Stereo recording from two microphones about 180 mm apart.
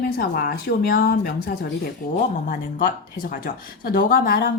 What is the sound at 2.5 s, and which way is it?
Speech, 50° left (ahead or behind).